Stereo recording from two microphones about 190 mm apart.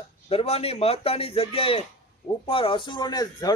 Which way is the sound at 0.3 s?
30° left (ahead or behind).